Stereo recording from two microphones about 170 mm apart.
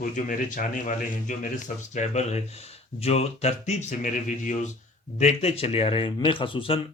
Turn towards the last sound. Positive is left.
turn(degrees=30)  # may be behind; listen again after turning